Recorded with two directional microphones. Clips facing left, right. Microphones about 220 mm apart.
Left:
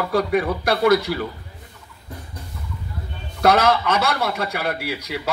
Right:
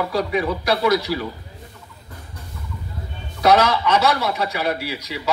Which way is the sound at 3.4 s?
55° left (ahead or behind).